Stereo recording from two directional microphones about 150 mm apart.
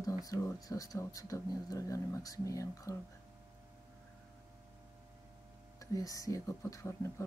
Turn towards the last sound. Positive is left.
turn(degrees=20)  # may be behind; listen again after turning